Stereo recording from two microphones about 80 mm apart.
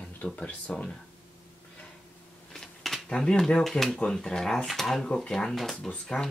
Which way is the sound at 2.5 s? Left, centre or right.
Centre.